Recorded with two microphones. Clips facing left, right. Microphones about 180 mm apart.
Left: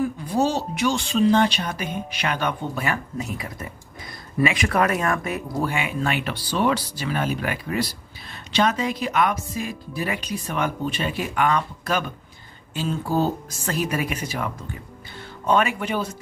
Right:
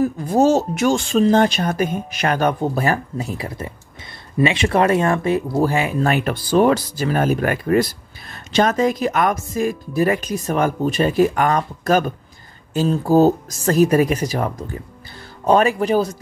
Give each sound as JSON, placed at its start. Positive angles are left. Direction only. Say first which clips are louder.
{"t": 0.0, "sound": "speech", "louder": "right 6 dB", "side_deg": -45}